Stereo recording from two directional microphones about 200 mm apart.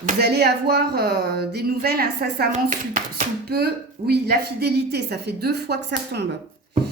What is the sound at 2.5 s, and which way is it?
Speech, 40° right (ahead or behind).